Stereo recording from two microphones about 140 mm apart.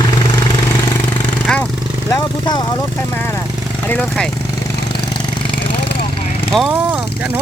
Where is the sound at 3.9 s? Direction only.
5° left (ahead or behind).